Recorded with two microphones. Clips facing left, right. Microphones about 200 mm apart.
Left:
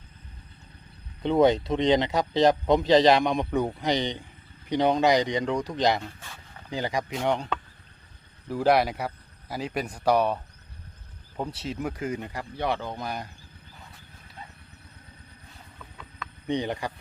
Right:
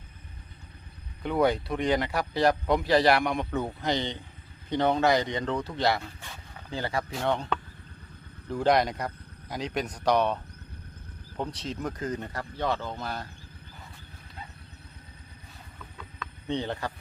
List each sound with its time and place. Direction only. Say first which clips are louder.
1.2 s a man's voice: left 4 dB; 25° left (ahead or behind)
8.4 s a man's voice: left 2 dB; 5° left (ahead or behind)
16.5 s a man's voice: left 3 dB; 15° left (ahead or behind)